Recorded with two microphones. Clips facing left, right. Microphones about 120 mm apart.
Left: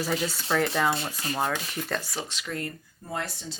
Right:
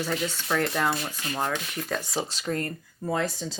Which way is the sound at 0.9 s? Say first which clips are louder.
Left 1 dB; 30° left (ahead or behind).